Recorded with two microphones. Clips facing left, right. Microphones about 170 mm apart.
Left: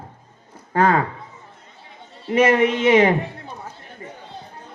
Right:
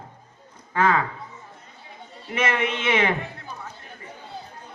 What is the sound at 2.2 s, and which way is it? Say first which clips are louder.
Speech: left 9 dB; 40° left (ahead or behind).